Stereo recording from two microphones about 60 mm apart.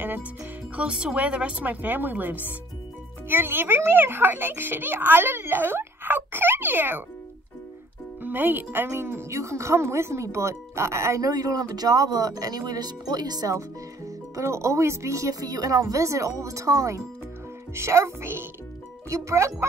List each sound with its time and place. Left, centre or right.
0.7 s a child's voice: centre; by 7.0 s right
8.2 s speech: right
11.2 s speech: right
19.0 s speech: right